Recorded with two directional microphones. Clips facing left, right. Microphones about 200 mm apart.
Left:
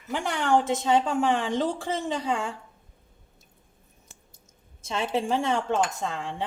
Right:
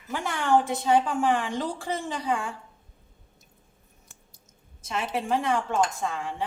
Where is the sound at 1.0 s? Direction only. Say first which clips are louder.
Left 1 dB; 25° left (ahead or behind).